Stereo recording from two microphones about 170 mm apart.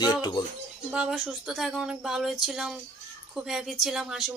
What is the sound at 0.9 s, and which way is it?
Speech, centre (ahead or behind).